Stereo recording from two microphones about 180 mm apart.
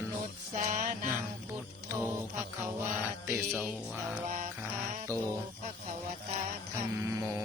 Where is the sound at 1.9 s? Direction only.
15° right (ahead or behind).